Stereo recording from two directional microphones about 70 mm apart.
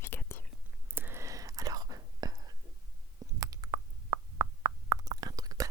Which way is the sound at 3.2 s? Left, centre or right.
Right.